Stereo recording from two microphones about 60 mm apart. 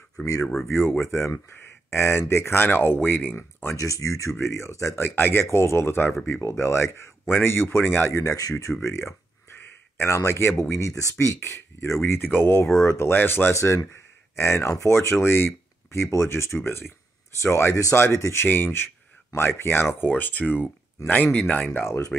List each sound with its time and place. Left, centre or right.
0.2 s speech: left
0.7 s speech: left
3.7 s speech: left
5.0 s speech: left
8.4 s speech: left
8.8 s a sound: left
10.1 s speech: left
10.6 s speech: left
12.7 s speech: left
13.1 s speech: left
13.5 s speech: left
21.6 s speech: left